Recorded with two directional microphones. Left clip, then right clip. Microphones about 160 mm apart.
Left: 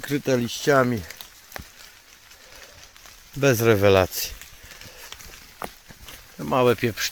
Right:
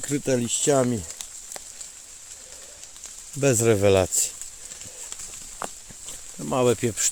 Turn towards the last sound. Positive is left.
turn(degrees=-15)  # may be behind; listen again after turning